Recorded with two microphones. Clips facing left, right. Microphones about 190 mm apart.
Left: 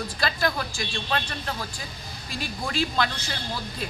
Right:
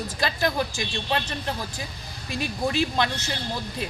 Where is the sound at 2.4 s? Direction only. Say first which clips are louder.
Right 4 dB; 20° right (ahead or behind).